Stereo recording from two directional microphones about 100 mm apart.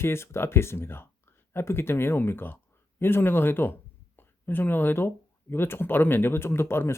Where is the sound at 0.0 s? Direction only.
25° left (ahead or behind).